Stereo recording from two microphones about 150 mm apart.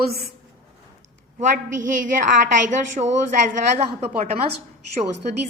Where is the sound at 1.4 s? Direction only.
60° right (ahead or behind).